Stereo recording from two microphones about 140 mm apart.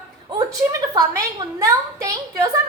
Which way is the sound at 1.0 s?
25° right (ahead or behind).